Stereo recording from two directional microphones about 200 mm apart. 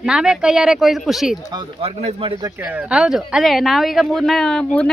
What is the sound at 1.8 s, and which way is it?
Speech, 30° right (ahead or behind).